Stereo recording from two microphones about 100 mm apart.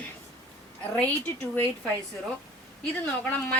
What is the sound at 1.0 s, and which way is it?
Speech, 20° left (ahead or behind).